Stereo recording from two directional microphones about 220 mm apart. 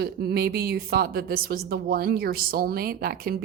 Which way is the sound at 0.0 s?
45° right (ahead or behind).